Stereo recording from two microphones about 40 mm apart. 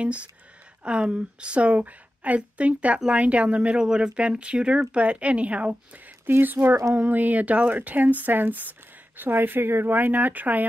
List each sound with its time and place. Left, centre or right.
0.0 s a woman's voice: right
6.2 s speech: right
7.1 s speech: right
9.8 s speech: right